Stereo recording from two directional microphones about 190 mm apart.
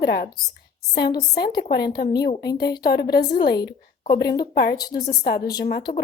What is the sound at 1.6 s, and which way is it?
Speech, 55° left (ahead or behind).